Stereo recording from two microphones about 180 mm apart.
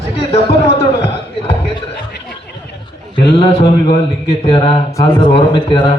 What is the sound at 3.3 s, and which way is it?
A man's voice, 30° left (ahead or behind).